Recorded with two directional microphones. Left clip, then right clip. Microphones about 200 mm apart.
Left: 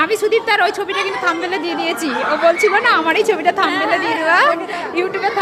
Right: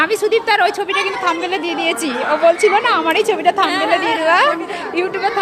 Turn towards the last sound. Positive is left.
turn(degrees=-10)  # may be behind; listen again after turning